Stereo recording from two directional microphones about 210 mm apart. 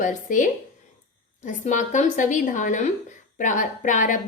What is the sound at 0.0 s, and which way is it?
Speech, 35° left (ahead or behind).